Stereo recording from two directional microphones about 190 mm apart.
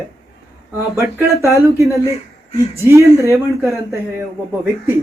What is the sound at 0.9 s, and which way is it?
Speech, 15° right (ahead or behind).